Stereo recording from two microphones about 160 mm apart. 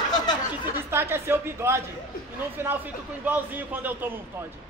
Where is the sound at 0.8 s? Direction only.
15° right (ahead or behind).